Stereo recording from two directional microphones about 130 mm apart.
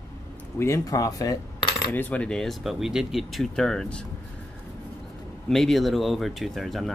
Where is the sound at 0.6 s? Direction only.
20° left (ahead or behind).